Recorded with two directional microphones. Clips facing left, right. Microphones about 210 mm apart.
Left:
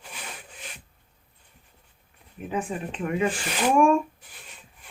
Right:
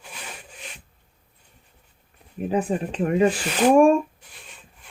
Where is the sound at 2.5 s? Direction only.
35° right (ahead or behind).